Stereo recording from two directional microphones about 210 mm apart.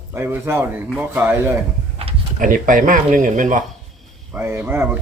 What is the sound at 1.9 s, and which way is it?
Speech, 35° right (ahead or behind).